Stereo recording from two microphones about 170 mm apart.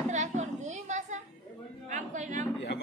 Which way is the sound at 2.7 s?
90° left.